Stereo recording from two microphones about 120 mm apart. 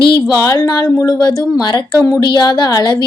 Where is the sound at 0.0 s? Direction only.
45° left (ahead or behind).